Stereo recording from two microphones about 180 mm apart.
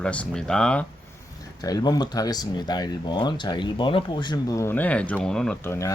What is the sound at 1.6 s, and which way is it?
Speech, 20° left (ahead or behind).